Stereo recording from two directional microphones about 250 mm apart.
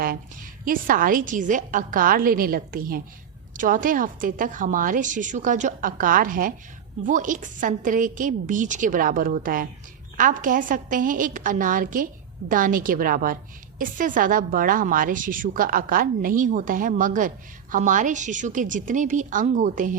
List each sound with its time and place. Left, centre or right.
0.6 s a woman's voice: right